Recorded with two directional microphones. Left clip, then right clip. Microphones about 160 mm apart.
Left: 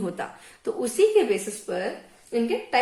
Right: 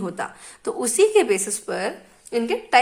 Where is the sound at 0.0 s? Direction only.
40° right (ahead or behind).